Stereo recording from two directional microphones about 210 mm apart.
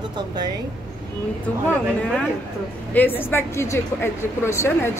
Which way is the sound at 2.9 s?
10° left (ahead or behind).